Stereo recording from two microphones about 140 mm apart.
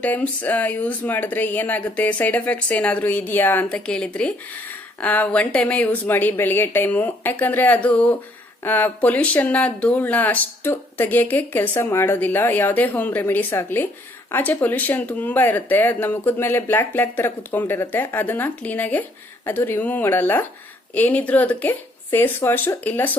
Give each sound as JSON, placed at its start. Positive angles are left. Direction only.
{"t": 0.0, "sound": "speech", "side_deg": 10}